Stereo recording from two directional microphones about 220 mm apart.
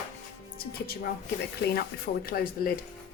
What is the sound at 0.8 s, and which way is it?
Speech, 45° left (ahead or behind).